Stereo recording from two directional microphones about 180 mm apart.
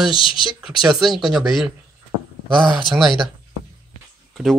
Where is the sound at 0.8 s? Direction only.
Centre (ahead or behind).